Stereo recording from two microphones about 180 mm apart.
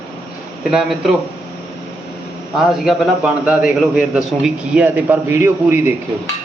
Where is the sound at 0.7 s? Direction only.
Centre (ahead or behind).